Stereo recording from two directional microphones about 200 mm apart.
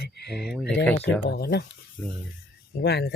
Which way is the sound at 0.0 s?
55° left (ahead or behind).